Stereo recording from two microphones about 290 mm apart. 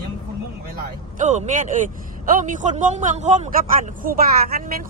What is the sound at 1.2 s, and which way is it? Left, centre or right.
Speech, right.